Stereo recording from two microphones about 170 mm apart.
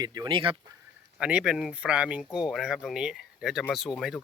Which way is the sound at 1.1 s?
5° right (ahead or behind).